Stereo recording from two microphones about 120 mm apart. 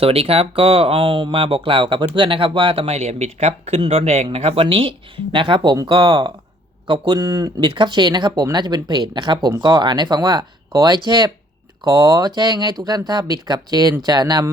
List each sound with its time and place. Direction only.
0.0 s speech: 55° right (ahead or behind); by 14.4 s 35° right (ahead or behind)